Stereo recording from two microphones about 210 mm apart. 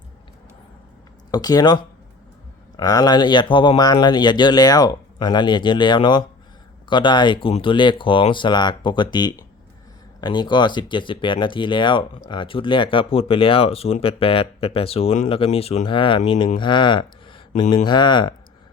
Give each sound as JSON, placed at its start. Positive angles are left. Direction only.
{"t": 1.3, "sound": "speech", "side_deg": 20}
{"t": 17.5, "sound": "speech", "side_deg": 35}
{"t": 17.8, "sound": "speech", "side_deg": 20}